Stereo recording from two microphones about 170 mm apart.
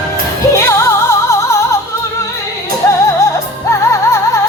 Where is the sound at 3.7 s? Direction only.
15° left (ahead or behind).